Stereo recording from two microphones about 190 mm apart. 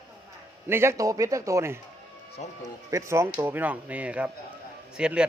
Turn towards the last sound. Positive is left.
turn(degrees=-5)  # may be behind; listen again after turning